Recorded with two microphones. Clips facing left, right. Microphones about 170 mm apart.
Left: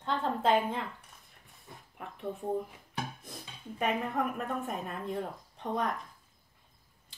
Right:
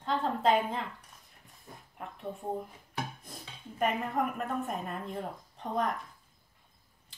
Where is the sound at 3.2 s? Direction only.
Centre (ahead or behind).